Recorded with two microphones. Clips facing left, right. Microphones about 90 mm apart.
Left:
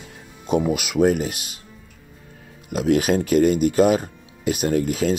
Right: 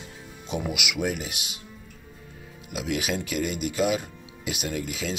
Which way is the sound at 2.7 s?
45° left (ahead or behind).